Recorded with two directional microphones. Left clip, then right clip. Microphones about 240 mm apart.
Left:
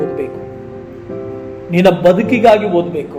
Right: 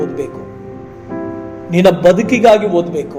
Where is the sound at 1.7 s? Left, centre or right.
Right.